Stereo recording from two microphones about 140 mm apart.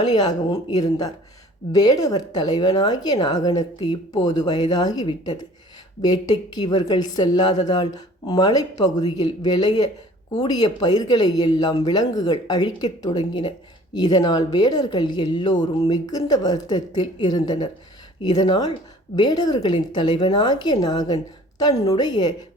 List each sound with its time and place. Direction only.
0.1 s a woman's voice: 30° left (ahead or behind)